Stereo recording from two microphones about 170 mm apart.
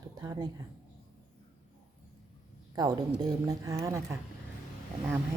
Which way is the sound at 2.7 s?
25° right (ahead or behind).